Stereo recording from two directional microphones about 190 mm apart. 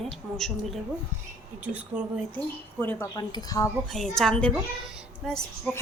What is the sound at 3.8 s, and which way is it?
A woman's voice, centre (ahead or behind).